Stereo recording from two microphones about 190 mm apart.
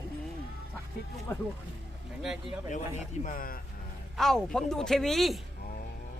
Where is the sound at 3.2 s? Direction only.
50° left (ahead or behind).